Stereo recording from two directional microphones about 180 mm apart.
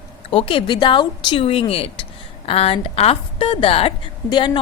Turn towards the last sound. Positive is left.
turn(degrees=25)  # may be behind; listen again after turning